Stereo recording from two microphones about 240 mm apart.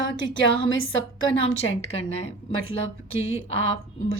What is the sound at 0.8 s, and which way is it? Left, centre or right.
Speech, left.